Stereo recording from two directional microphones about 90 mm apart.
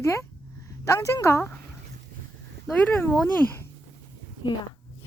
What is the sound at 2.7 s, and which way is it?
Speech, 20° left (ahead or behind).